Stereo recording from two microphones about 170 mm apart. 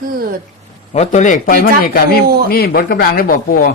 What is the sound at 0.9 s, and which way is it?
Speech, 45° left (ahead or behind).